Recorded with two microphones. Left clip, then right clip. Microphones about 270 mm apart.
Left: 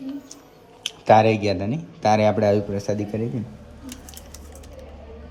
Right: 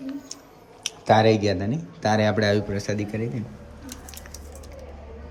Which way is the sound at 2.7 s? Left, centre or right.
Centre.